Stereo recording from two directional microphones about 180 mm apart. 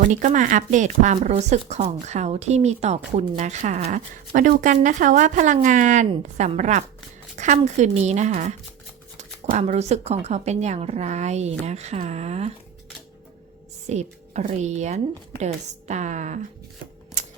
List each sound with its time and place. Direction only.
0.1 s speech: 45° right (ahead or behind)
4.3 s a woman's voice: 50° right (ahead or behind)
13.8 s speech: 40° right (ahead or behind)